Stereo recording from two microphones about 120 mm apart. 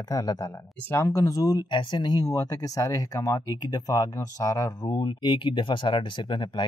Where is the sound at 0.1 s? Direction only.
30° left (ahead or behind).